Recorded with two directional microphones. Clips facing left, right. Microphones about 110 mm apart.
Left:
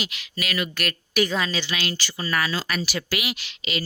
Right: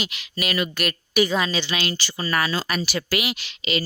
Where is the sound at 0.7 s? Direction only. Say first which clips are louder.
Right 3 dB; 15° right (ahead or behind).